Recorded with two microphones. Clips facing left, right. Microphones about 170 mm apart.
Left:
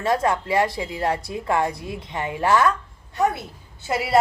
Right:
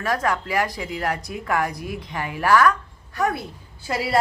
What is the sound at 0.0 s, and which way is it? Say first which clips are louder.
A woman's voice: left 2 dB; 25° left (ahead or behind).